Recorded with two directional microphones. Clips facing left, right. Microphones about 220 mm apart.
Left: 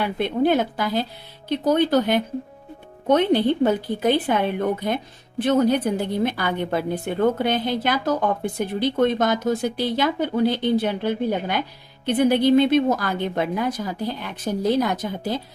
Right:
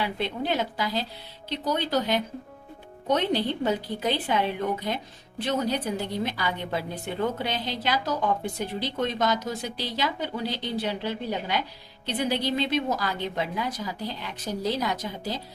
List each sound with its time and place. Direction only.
0.0 s a woman's voice: 50° left (ahead or behind)